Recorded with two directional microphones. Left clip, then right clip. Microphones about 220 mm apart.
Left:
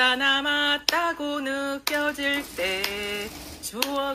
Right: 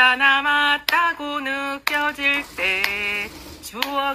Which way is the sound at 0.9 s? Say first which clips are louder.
Right 5 dB; 20° right (ahead or behind).